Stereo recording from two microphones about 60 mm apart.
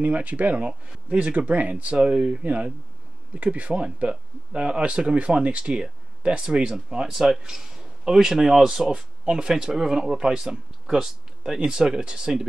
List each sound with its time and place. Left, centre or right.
0.0 s speech: right